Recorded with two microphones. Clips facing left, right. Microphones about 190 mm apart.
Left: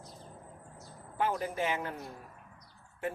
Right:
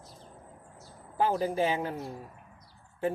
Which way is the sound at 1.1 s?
30° right (ahead or behind).